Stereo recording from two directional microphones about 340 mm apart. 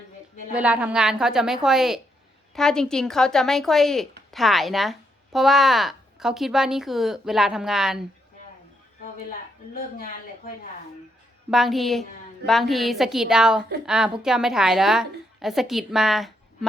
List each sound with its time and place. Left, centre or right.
0.5 s speech: centre
10.0 s speech: left
11.5 s speech: centre